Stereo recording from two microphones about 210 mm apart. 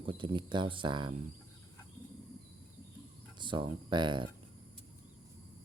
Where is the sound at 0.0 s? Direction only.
25° right (ahead or behind).